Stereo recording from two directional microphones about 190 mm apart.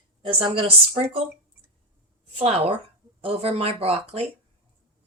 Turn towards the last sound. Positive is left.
turn(degrees=-30)  # may be behind; listen again after turning